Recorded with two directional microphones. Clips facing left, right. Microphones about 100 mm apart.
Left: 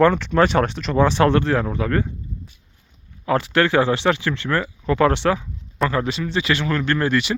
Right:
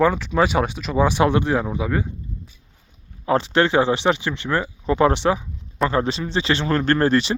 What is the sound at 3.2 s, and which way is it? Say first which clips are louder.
Speech: even; 25° right (ahead or behind).